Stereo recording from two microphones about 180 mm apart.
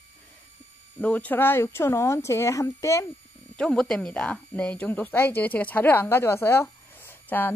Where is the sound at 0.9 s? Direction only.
10° left (ahead or behind).